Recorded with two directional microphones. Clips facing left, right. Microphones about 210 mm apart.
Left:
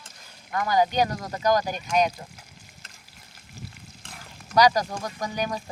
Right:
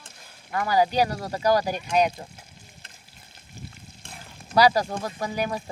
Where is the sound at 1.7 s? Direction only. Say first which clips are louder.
Right 1 dB; 25° right (ahead or behind).